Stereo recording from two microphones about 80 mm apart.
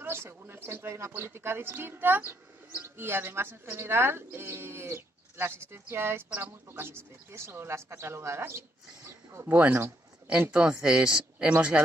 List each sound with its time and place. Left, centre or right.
0.0 s speech: right
9.5 s speech: right